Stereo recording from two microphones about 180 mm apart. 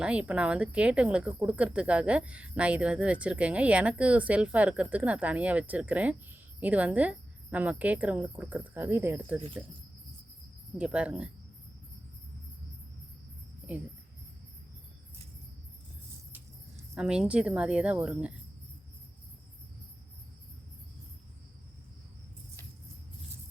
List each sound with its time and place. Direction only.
0.0 s speech: 5° right (ahead or behind)
10.8 s speech: 5° right (ahead or behind)
16.3 s vehicle: 15° right (ahead or behind)
17.0 s speech: 5° right (ahead or behind)